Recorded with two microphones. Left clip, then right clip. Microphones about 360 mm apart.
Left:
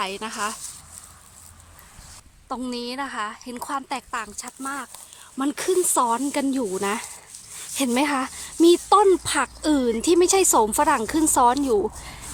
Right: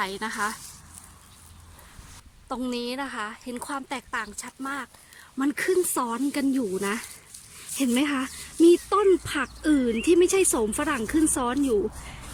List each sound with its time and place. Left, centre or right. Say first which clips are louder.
0.0 s a woman's voice: left 1 dB; centre
2.5 s a woman's voice: left 1 dB; centre